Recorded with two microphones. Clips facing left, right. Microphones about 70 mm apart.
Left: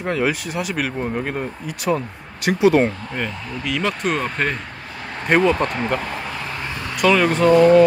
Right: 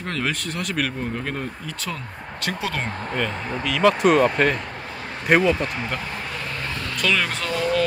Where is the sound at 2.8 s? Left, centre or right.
Right.